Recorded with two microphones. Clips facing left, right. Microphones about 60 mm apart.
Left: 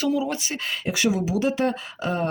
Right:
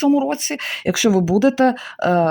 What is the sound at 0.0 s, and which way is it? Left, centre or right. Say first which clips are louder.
Speech: right 8 dB; right.